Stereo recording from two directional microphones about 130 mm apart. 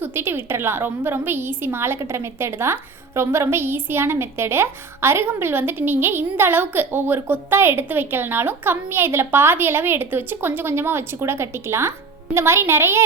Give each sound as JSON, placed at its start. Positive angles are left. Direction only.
{"t": 0.0, "sound": "a woman's voice", "side_deg": -15}